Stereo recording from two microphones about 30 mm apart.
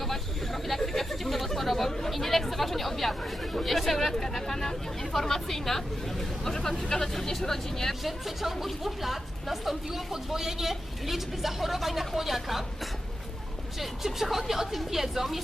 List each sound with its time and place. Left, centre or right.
0.0 s chatter: centre
6.5 s a sound: centre
6.9 s vehicle: centre
8.0 s music: centre
13.7 s speech: centre